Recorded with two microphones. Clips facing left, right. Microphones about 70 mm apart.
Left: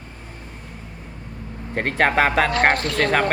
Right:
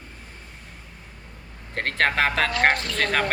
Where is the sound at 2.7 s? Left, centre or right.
Left.